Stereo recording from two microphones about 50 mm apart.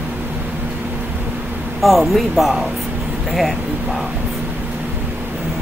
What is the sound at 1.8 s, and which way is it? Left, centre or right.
Speech, centre.